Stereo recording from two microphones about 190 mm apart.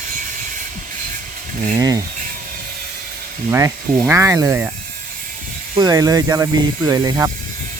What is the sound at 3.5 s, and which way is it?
Speech, 15° right (ahead or behind).